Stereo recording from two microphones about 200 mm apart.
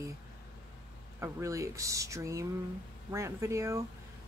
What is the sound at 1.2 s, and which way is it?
A woman's voice, 15° right (ahead or behind).